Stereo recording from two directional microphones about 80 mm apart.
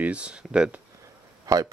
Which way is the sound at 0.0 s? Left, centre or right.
Centre.